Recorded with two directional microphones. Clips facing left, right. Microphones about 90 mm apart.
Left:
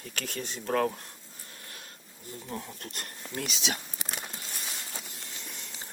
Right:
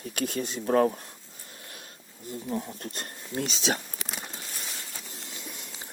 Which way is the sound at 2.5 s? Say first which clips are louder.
Right 5 dB; 20° right (ahead or behind).